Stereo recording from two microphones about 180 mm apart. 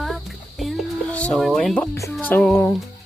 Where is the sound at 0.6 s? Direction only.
5° left (ahead or behind).